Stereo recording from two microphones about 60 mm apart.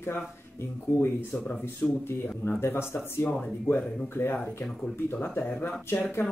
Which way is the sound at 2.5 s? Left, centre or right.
Left.